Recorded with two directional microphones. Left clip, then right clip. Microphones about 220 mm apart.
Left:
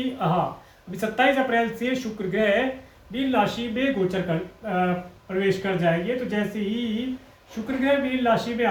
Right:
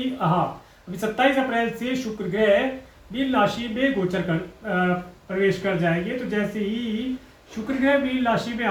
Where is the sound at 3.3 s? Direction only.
15° left (ahead or behind).